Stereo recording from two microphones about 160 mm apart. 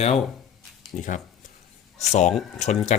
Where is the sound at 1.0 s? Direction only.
55° left (ahead or behind).